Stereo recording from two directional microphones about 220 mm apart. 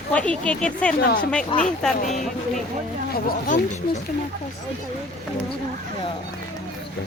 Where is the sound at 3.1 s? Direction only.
35° left (ahead or behind).